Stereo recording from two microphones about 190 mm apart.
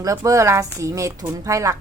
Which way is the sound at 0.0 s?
15° right (ahead or behind).